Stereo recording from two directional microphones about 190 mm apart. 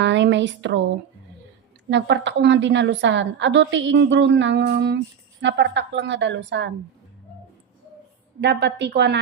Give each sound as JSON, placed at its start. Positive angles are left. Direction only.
{"t": 0.0, "sound": "a woman's voice", "side_deg": -70}
{"t": 1.9, "sound": "a woman's voice", "side_deg": -70}
{"t": 8.4, "sound": "a woman's voice", "side_deg": -65}